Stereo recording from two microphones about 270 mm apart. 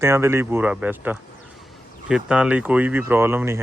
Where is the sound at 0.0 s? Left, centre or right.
Centre.